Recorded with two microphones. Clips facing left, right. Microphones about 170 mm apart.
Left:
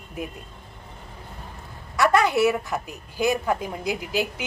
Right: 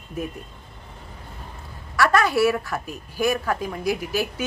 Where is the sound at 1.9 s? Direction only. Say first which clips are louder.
Even; 20° left (ahead or behind).